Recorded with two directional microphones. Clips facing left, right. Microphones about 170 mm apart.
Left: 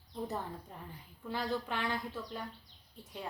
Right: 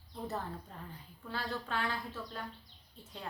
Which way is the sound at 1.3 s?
15° left (ahead or behind).